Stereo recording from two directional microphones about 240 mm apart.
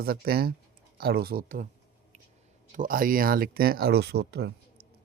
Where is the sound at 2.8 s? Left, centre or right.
Right.